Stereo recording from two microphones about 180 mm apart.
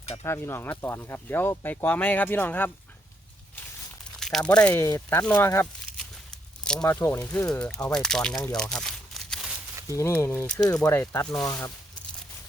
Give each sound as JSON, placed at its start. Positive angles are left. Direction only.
{"t": 0.2, "sound": "speech", "side_deg": 15}
{"t": 4.2, "sound": "speech", "side_deg": 0}
{"t": 6.7, "sound": "speech", "side_deg": 10}
{"t": 8.5, "sound": "crumpling", "side_deg": 5}
{"t": 9.9, "sound": "speech", "side_deg": 15}